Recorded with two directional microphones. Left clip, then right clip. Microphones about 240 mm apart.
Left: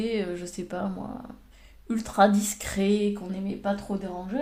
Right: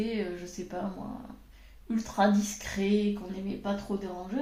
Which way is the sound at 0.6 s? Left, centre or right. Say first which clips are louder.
Left 4 dB; left.